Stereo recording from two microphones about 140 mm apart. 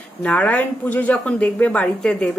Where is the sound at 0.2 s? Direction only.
10° left (ahead or behind).